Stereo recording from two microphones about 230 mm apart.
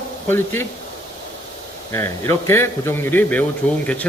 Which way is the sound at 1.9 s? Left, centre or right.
Centre.